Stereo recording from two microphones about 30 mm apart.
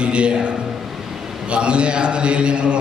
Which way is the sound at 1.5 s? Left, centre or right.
Right.